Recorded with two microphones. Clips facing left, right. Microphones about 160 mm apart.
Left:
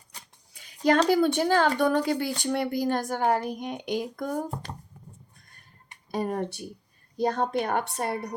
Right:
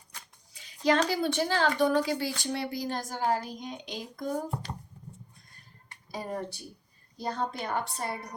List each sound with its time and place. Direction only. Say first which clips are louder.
0.5 s a sound: left 3 dB; 55° left (ahead or behind)
1.0 s speech: left 6 dB; 50° left (ahead or behind)
6.1 s a woman's voice: left 6 dB; 60° left (ahead or behind)